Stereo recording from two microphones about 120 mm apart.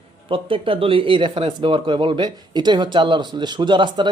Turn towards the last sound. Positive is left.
turn(degrees=-40)  # may be behind; listen again after turning